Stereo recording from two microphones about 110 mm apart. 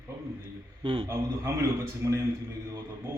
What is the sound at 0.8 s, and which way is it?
Speech, 55° right (ahead or behind).